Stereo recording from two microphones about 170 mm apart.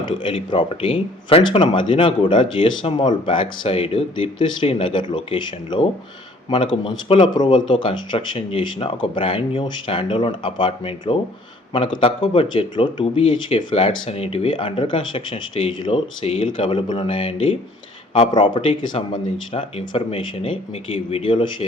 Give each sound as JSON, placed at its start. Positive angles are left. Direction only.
{"t": 0.0, "sound": "speech", "side_deg": 30}